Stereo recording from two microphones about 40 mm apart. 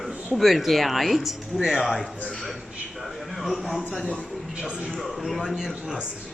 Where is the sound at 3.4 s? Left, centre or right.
Centre.